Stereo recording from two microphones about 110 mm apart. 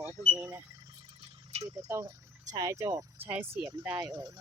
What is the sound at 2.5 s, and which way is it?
Speech, 30° right (ahead or behind).